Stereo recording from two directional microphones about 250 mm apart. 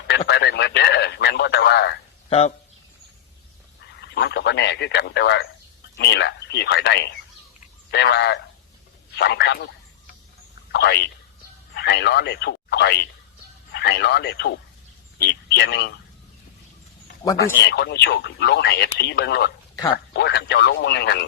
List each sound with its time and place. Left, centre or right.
0.3 s radio: left
4.1 s speech: left
10.7 s speech: left
17.3 s speech: left